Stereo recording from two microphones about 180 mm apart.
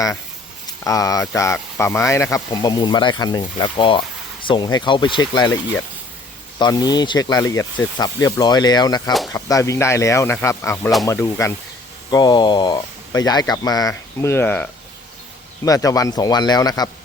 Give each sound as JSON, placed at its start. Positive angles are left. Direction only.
{"t": 0.9, "sound": "speech", "side_deg": 20}
{"t": 6.6, "sound": "speech", "side_deg": 20}